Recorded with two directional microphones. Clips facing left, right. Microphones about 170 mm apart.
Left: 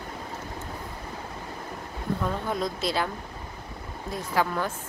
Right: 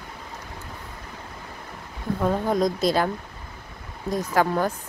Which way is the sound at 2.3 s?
40° right (ahead or behind).